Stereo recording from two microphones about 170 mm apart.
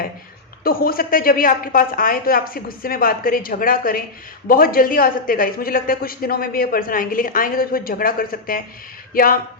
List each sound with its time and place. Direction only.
0.6 s speech: 60° left (ahead or behind)